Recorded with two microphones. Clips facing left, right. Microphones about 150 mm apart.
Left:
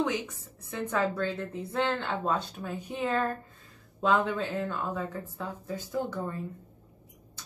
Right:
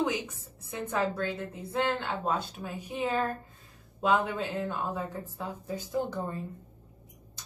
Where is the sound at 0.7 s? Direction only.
15° right (ahead or behind).